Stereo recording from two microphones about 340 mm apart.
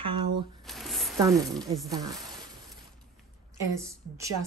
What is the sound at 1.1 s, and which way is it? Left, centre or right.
Speech, centre.